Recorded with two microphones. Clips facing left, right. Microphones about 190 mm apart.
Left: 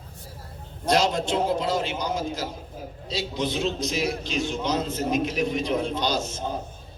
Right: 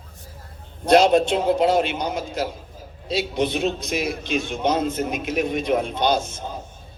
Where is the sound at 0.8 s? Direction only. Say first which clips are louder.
Right 7 dB; 60° right (ahead or behind).